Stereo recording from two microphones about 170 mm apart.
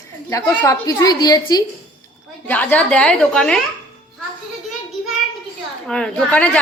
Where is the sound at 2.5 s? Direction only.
10° left (ahead or behind).